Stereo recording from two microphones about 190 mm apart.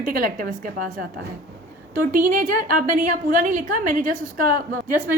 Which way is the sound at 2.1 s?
45° right (ahead or behind).